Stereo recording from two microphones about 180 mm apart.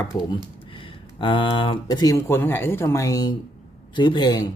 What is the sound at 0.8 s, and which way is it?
Speech, 30° left (ahead or behind).